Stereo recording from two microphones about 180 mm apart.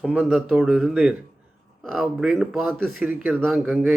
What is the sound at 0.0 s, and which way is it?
Speech, centre (ahead or behind).